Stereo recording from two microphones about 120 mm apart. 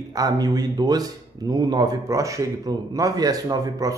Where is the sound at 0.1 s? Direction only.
35° right (ahead or behind).